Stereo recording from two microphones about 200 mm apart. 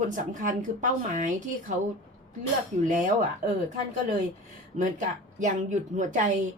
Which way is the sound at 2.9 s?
40° right (ahead or behind).